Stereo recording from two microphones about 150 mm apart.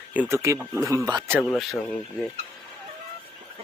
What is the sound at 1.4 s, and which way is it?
Speech, 5° left (ahead or behind).